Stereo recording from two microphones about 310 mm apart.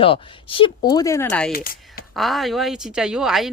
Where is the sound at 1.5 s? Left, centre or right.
Left.